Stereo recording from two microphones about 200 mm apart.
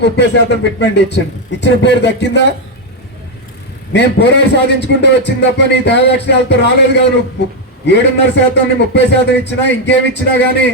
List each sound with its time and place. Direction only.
0.0 s speech: 60° left (ahead or behind)
3.9 s speech: 60° left (ahead or behind)